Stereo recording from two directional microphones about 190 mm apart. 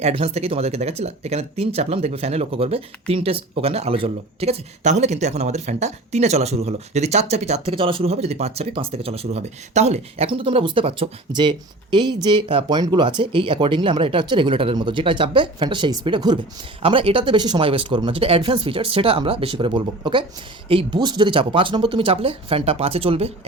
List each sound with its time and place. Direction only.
0.0 s speech: 30° right (ahead or behind)